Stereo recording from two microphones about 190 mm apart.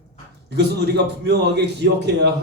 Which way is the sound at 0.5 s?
60° right (ahead or behind).